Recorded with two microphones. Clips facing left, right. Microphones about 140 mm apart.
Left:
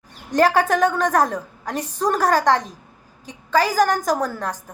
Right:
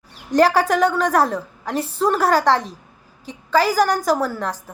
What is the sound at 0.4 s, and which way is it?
A woman's voice, 50° left (ahead or behind).